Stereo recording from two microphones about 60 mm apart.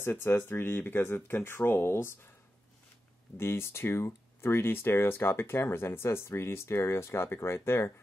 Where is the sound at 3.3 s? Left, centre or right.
Left.